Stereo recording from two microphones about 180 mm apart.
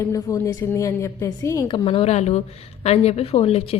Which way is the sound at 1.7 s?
30° left (ahead or behind).